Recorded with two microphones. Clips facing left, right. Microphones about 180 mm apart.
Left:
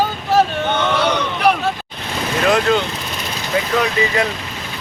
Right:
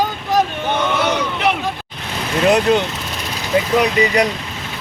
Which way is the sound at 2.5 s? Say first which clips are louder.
Right 2 dB; 20° right (ahead or behind).